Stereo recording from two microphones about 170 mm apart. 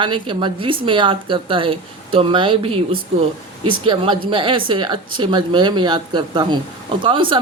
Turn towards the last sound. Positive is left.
turn(degrees=-30)  # may be behind; listen again after turning